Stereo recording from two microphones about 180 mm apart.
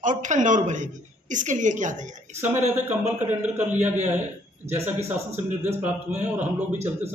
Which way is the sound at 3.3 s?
10° right (ahead or behind).